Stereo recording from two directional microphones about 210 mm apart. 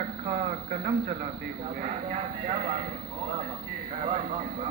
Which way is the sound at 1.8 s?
35° right (ahead or behind).